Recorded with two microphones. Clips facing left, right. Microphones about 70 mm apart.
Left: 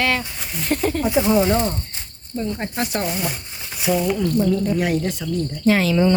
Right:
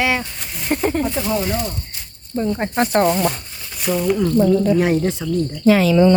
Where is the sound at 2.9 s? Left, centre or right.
Right.